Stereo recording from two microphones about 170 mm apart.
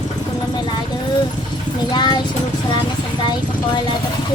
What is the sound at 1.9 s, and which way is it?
Speech, 25° left (ahead or behind).